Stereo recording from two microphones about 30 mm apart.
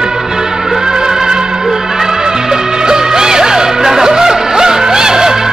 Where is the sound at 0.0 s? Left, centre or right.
Right.